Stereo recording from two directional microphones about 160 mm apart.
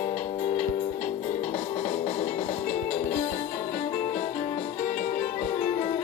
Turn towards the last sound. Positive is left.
turn(degrees=45)  # may be behind; listen again after turning